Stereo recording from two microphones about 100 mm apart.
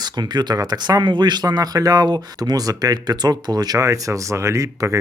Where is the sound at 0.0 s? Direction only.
45° right (ahead or behind).